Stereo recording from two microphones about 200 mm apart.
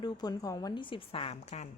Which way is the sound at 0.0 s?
20° left (ahead or behind).